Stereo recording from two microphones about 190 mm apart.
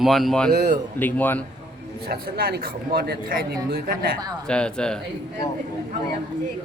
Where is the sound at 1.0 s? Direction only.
10° left (ahead or behind).